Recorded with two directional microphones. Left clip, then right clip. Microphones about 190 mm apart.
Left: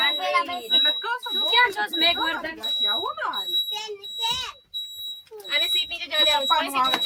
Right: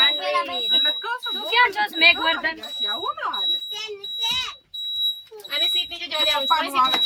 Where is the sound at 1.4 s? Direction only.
20° right (ahead or behind).